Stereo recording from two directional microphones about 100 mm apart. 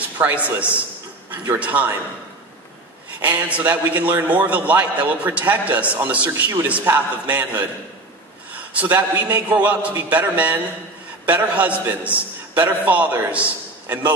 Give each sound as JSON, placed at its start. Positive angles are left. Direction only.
{"t": 0.0, "sound": "a man's voice", "side_deg": -15}
{"t": 3.2, "sound": "a man's voice", "side_deg": -15}
{"t": 8.5, "sound": "a sound", "side_deg": -15}
{"t": 8.9, "sound": "a man's voice", "side_deg": -20}